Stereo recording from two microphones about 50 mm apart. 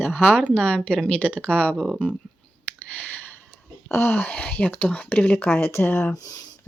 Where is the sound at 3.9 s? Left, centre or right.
Left.